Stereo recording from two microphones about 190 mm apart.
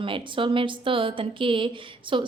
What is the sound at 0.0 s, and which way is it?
A woman's voice, 25° right (ahead or behind).